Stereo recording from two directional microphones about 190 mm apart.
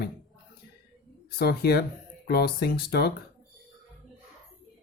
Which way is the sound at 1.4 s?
55° left (ahead or behind).